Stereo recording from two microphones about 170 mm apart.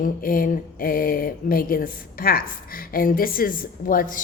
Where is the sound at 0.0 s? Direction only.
55° left (ahead or behind).